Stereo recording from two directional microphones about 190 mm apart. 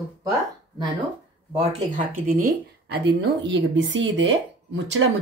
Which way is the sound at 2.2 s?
50° right (ahead or behind).